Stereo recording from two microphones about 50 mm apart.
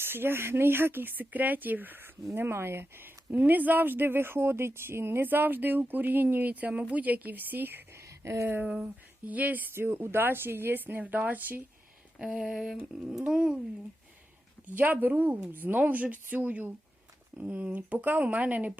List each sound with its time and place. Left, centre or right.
0.0 s speech: right
3.3 s speech: right
8.2 s speech: right
8.6 s speech: centre
9.2 s speech: right
9.7 s speech: right
12.2 s a sound: centre
14.8 s speech: right